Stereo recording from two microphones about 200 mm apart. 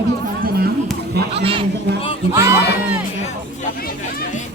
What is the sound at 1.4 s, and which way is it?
Speech, 25° right (ahead or behind).